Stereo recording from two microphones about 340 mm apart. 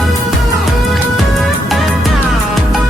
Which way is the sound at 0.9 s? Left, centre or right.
Centre.